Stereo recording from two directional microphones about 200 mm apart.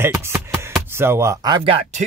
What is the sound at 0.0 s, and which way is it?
Music, 10° right (ahead or behind).